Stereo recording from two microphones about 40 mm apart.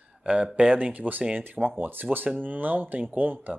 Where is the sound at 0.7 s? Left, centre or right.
Right.